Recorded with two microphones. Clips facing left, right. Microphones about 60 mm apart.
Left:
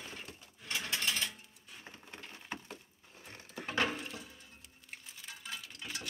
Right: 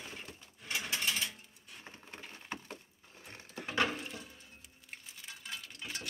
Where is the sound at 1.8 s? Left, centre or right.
Right.